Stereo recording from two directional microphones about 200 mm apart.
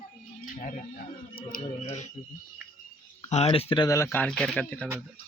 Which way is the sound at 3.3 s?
30° left (ahead or behind).